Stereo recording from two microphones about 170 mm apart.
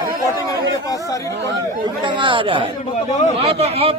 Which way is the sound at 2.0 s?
30° right (ahead or behind).